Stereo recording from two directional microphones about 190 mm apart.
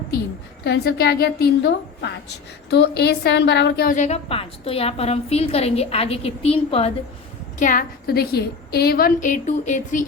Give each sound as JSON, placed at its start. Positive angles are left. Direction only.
{"t": 0.6, "sound": "a woman's voice", "side_deg": 60}
{"t": 3.9, "sound": "a woman's voice", "side_deg": 35}
{"t": 7.6, "sound": "a woman's voice", "side_deg": 45}